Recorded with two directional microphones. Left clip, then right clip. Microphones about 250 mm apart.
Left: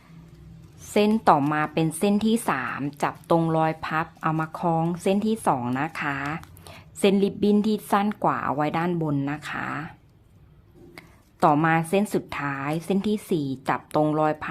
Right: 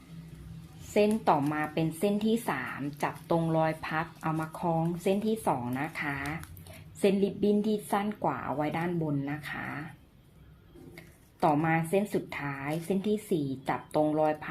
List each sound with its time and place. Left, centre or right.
0.9 s a woman's voice: left
10.9 s a woman's voice: left